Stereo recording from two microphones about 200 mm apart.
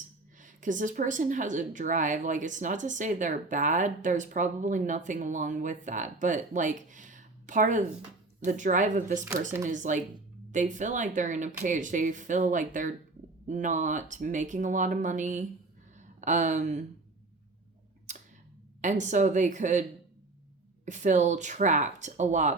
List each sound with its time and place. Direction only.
0.3 s a woman's voice: 40° right (ahead or behind)
18.8 s a woman's voice: 35° right (ahead or behind)
20.8 s a woman's voice: 35° right (ahead or behind)